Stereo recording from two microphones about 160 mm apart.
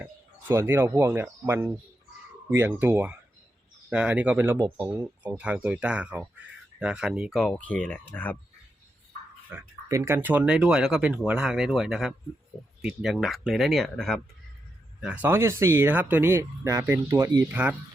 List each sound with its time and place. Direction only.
0.0 s speech: 15° right (ahead or behind); by 8.4 s 10° left (ahead or behind)
9.5 s speech: 15° right (ahead or behind); by 14.2 s centre (ahead or behind)
15.0 s speech: 10° right (ahead or behind)